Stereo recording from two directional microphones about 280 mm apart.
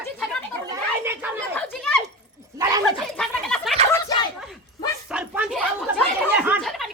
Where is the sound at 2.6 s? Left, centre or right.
Centre.